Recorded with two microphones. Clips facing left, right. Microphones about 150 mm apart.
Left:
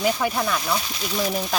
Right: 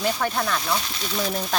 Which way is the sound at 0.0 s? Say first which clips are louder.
Left 2 dB; 10° left (ahead or behind).